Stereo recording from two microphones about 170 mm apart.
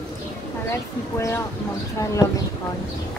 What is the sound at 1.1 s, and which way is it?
Speech, 15° left (ahead or behind).